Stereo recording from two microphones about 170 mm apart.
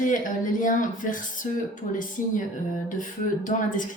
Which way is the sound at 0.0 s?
50° left (ahead or behind).